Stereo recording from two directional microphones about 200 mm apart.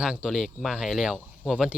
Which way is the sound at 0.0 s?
5° right (ahead or behind).